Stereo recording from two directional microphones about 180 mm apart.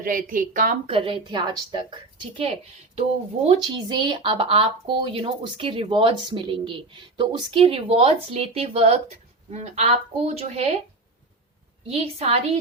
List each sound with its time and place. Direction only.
0.0 s a woman's voice: 50° right (ahead or behind)
0.9 s speech: 30° right (ahead or behind)
11.9 s a woman's voice: 35° right (ahead or behind)